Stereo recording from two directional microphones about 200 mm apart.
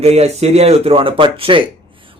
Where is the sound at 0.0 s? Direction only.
30° right (ahead or behind).